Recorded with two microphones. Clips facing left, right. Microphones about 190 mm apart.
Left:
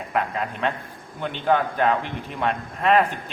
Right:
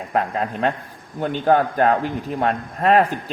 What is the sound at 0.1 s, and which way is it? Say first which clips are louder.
A man's voice: right 4 dB; 35° right (ahead or behind).